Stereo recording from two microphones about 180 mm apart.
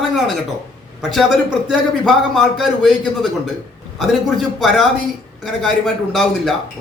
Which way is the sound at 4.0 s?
Centre (ahead or behind).